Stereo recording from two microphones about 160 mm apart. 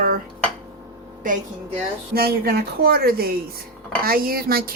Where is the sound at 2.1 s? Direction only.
70° right (ahead or behind).